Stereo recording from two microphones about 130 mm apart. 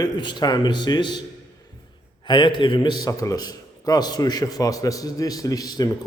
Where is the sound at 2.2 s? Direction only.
40° left (ahead or behind).